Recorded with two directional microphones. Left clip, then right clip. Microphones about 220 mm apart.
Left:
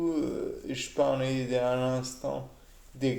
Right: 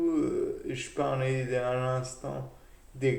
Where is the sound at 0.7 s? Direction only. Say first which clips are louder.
Left 3 dB; 40° left (ahead or behind).